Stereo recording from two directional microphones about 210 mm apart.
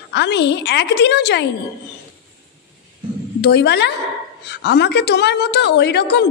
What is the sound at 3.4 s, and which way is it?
A woman's voice, 55° left (ahead or behind).